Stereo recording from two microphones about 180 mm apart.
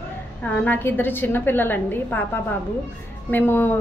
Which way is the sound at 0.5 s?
10° left (ahead or behind).